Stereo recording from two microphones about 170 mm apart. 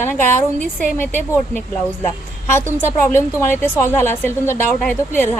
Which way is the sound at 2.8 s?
15° left (ahead or behind).